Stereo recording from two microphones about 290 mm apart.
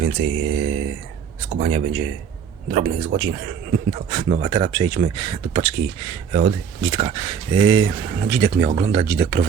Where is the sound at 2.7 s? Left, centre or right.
Right.